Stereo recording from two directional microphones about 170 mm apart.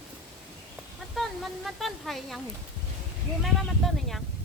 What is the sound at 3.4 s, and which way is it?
Speech, centre (ahead or behind).